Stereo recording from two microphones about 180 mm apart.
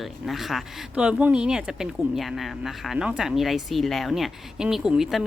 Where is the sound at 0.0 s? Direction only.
Centre (ahead or behind).